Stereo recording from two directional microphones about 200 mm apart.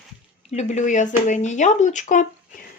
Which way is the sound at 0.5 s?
35° left (ahead or behind).